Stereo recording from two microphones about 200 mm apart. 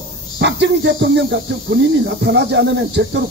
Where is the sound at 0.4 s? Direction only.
60° right (ahead or behind).